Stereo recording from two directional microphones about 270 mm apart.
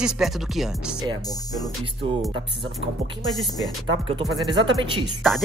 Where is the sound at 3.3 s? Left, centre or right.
Centre.